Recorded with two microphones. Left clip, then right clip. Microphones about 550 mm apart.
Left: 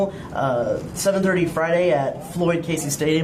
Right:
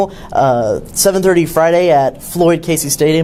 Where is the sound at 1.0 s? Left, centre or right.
Right.